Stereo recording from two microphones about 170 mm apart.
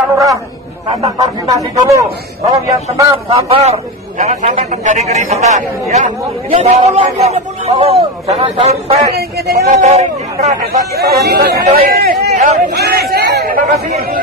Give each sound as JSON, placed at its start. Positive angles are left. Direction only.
{"t": 0.1, "sound": "a sound", "side_deg": -20}
{"t": 1.0, "sound": "speech", "side_deg": -20}
{"t": 3.3, "sound": "a man's voice", "side_deg": -35}
{"t": 10.5, "sound": "speech", "side_deg": -70}